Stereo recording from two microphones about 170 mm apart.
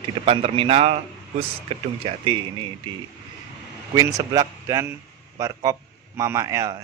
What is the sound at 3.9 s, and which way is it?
A man's voice, 20° right (ahead or behind).